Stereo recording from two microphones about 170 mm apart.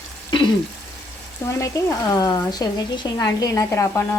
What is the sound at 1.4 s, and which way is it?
Speech, 15° left (ahead or behind).